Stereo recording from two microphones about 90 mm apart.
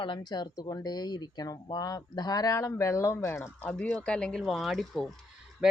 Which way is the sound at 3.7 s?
10° left (ahead or behind).